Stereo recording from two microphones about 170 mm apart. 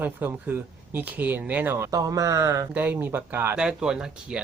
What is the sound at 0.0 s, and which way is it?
Speech, 10° right (ahead or behind).